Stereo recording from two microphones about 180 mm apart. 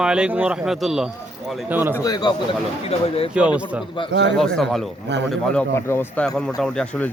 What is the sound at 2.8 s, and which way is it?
Speech, 35° left (ahead or behind).